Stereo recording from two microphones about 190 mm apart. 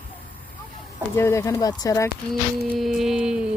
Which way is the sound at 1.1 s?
15° left (ahead or behind).